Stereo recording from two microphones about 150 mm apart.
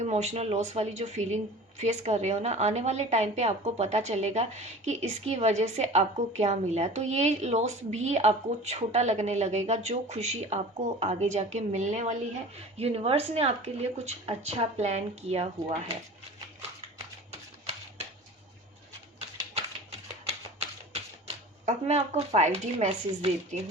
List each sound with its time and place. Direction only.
0.0 s a woman's voice: 50° right (ahead or behind)
20.2 s typewriter: 45° right (ahead or behind)